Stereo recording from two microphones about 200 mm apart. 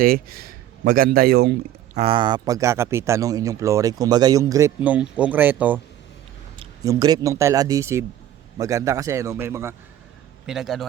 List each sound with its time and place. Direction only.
0.0 s speech: 45° right (ahead or behind)
2.0 s speech: 25° right (ahead or behind); by 5.8 s 10° right (ahead or behind)
6.8 s speech: 20° right (ahead or behind)
10.4 s a man's voice: centre (ahead or behind)